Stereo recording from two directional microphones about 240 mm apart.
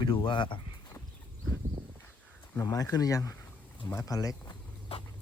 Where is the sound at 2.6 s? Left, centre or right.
Centre.